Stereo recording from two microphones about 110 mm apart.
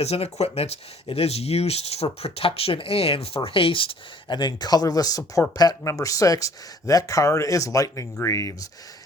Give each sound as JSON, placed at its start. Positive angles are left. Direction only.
{"t": 0.0, "sound": "speech", "side_deg": 70}